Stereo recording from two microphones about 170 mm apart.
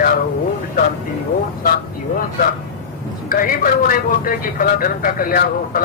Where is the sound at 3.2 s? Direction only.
55° left (ahead or behind).